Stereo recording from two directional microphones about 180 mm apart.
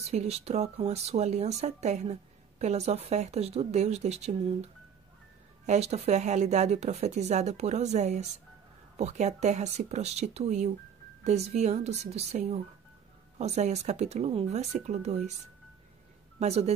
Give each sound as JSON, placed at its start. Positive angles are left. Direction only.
{"t": 0.0, "sound": "speech", "side_deg": -35}
{"t": 5.7, "sound": "speech", "side_deg": -35}
{"t": 16.3, "sound": "speech", "side_deg": -35}